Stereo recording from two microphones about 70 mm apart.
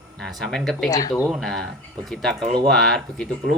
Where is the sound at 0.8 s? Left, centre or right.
Left.